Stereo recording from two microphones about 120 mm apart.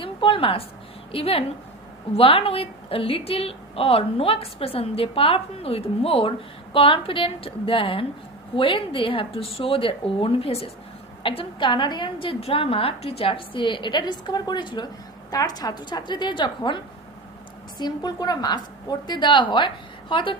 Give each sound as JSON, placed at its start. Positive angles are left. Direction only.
{"t": 0.0, "sound": "a woman's voice", "side_deg": 45}